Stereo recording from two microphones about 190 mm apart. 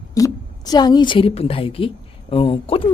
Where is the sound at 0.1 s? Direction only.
20° left (ahead or behind).